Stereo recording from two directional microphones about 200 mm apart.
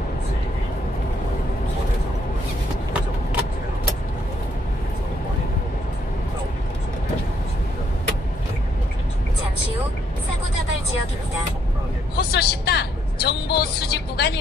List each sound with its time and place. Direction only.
12.2 s vehicle: 55° left (ahead or behind)